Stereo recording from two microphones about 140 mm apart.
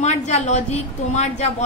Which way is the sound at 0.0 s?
55° left (ahead or behind).